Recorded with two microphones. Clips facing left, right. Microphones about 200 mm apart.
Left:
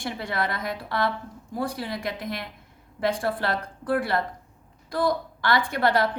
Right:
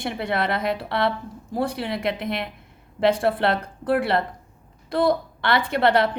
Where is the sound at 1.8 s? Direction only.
65° right (ahead or behind).